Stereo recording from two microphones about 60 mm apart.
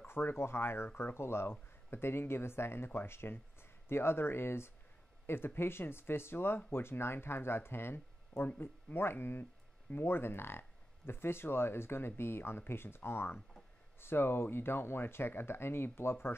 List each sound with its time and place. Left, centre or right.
0.0 s speech: left